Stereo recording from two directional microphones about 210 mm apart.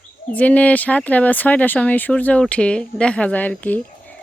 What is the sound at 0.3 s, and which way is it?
Speech, 5° left (ahead or behind).